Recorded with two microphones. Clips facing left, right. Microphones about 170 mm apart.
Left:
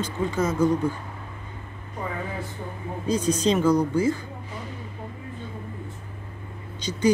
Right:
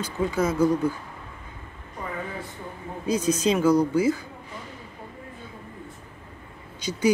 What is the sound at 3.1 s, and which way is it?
Speech, 35° left (ahead or behind).